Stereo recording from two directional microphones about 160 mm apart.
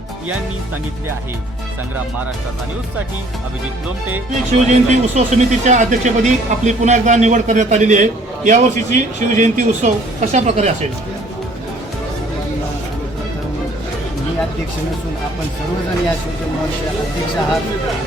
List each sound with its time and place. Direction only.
4.5 s speech: 45° right (ahead or behind)